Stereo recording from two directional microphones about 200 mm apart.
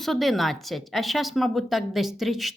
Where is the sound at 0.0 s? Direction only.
Centre (ahead or behind).